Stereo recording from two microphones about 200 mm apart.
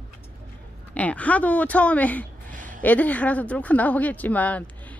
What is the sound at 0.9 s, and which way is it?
Speech, 5° left (ahead or behind).